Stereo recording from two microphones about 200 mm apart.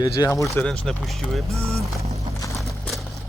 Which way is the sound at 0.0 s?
20° left (ahead or behind).